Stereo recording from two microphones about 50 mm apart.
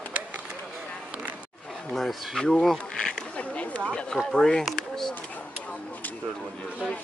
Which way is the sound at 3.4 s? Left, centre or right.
Left.